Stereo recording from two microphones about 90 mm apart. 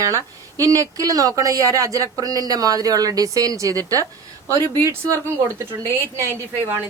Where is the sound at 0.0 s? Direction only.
40° right (ahead or behind).